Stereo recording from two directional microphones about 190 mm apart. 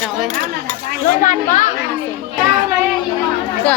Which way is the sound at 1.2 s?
40° left (ahead or behind).